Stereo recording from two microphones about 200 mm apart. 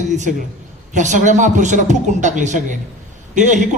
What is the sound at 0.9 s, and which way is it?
A man's voice, 40° right (ahead or behind).